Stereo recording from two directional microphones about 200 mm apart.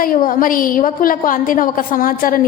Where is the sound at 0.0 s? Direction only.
45° left (ahead or behind).